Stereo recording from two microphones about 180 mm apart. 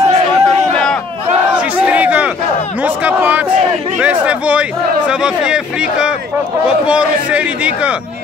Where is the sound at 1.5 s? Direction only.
5° right (ahead or behind).